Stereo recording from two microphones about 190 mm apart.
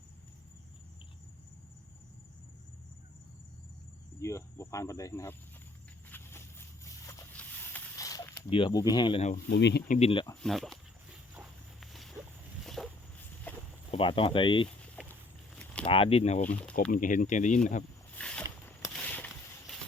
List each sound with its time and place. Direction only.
4.2 s speech: 15° left (ahead or behind)
6.1 s a sound: 10° left (ahead or behind)
8.4 s speech: 25° left (ahead or behind)
9.5 s speech: 65° left (ahead or behind)
9.9 s speech: 30° left (ahead or behind)
10.4 s walk: centre (ahead or behind)
12.6 s a sound: centre (ahead or behind)
13.9 s speech: 30° left (ahead or behind)
15.8 s speech: 30° left (ahead or behind)
18.2 s a sound: 5° left (ahead or behind)